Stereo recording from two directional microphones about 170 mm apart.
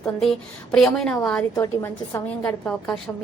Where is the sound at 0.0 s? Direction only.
5° left (ahead or behind).